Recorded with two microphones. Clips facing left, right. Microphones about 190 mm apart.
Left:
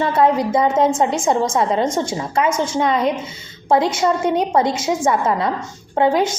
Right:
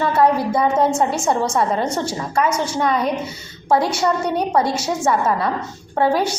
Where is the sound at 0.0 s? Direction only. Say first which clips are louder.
Left 1 dB; 20° left (ahead or behind).